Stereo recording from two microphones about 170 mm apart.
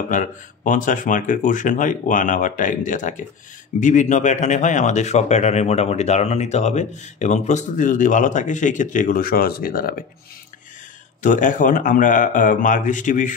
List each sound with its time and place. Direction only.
0.7 s speech: 50° left (ahead or behind)
11.2 s speech: 50° left (ahead or behind)